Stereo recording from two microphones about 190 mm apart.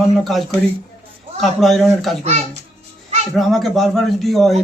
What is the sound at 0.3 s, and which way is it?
Speech, centre (ahead or behind).